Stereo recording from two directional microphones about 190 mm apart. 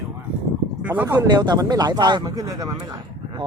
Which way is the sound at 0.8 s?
10° right (ahead or behind).